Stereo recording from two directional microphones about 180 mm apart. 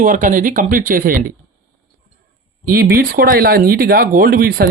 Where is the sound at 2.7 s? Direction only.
55° right (ahead or behind).